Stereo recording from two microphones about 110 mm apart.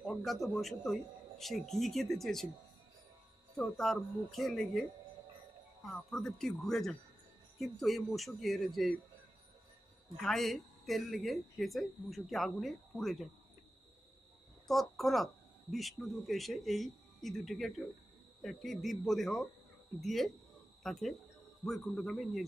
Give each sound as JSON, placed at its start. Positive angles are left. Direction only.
{"t": 0.0, "sound": "speech", "side_deg": 0}
{"t": 3.5, "sound": "speech", "side_deg": 5}
{"t": 5.9, "sound": "speech", "side_deg": 5}
{"t": 10.2, "sound": "speech", "side_deg": 0}
{"t": 14.7, "sound": "speech", "side_deg": 0}